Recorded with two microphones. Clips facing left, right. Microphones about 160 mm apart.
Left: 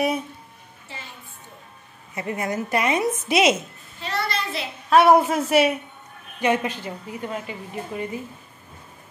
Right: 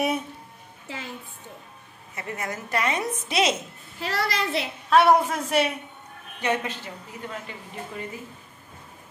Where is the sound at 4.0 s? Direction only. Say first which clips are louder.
Even; 90° right.